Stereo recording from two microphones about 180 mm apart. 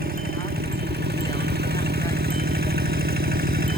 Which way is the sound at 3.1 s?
55° right (ahead or behind).